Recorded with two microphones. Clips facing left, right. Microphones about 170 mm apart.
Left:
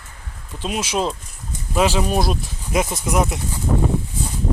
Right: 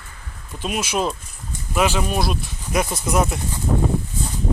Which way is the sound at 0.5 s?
25° left (ahead or behind).